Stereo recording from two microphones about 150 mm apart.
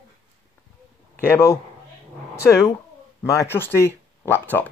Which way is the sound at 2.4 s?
20° left (ahead or behind).